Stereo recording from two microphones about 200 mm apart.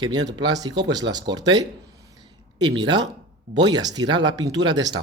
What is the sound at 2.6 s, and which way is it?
Speech, 20° right (ahead or behind).